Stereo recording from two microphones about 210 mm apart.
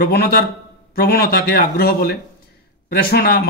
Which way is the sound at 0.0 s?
45° left (ahead or behind).